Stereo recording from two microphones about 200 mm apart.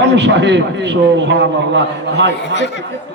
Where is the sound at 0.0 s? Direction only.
60° right (ahead or behind).